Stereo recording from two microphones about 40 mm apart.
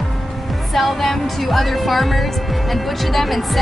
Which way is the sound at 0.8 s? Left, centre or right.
Centre.